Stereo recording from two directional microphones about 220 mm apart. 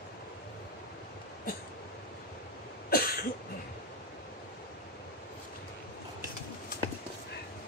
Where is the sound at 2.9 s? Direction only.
45° left (ahead or behind).